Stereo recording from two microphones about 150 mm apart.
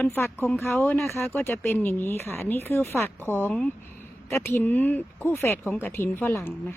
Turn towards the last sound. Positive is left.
turn(degrees=15)  # may be behind; listen again after turning